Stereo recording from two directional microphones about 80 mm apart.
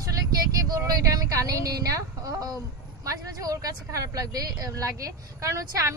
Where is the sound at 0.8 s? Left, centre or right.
Right.